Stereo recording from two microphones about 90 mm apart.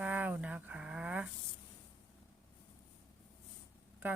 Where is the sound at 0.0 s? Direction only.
15° right (ahead or behind).